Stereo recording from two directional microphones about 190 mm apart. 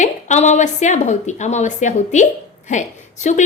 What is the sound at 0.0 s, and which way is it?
A woman's voice, 40° left (ahead or behind).